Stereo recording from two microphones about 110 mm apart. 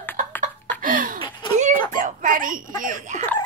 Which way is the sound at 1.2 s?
50° left (ahead or behind).